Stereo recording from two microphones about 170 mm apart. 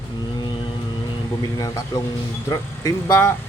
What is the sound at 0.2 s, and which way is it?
Vehicle, 25° left (ahead or behind).